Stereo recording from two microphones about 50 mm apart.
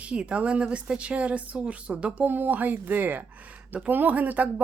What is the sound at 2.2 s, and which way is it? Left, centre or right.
Speech, right.